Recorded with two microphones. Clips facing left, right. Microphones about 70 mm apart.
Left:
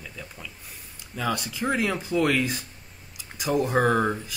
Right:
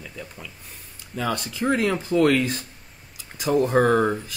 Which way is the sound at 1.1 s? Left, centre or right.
Centre.